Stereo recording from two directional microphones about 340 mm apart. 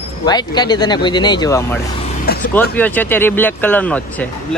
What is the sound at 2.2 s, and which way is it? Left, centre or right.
Vehicle, left.